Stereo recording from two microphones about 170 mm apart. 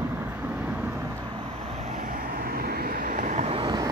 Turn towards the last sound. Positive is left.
turn(degrees=-25)  # may be behind; listen again after turning